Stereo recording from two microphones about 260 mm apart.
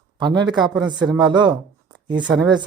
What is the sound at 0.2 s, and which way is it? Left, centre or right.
Speech, centre.